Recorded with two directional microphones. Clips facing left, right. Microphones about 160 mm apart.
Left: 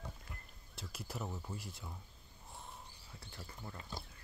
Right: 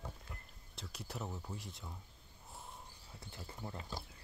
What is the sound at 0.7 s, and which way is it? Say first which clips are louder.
Speech: left 1 dB; centre (ahead or behind).